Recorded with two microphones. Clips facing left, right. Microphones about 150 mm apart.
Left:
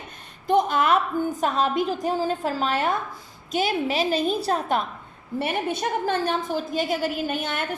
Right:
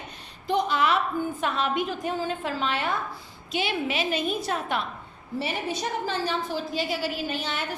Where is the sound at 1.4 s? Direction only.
40° left (ahead or behind).